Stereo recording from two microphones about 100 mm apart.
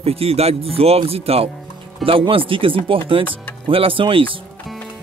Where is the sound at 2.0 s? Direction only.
65° right (ahead or behind).